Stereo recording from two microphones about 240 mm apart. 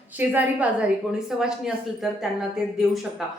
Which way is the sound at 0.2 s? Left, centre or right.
Centre.